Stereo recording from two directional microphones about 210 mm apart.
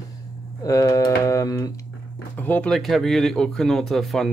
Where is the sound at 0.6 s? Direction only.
15° left (ahead or behind).